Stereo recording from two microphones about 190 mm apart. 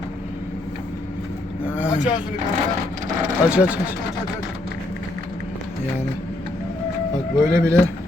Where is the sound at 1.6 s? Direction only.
5° right (ahead or behind).